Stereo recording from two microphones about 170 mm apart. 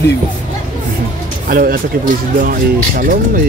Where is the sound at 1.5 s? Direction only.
60° right (ahead or behind).